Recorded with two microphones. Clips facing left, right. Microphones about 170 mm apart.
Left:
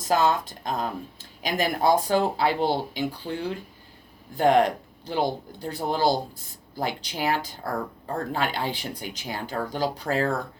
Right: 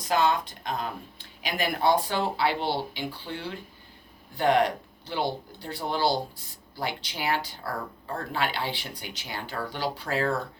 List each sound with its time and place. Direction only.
0.0 s speech: 45° left (ahead or behind)